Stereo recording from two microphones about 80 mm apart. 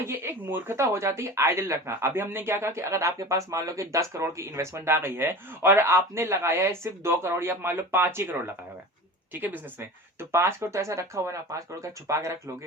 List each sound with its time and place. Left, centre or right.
0.0 s a woman's voice: right
10.2 s speech: right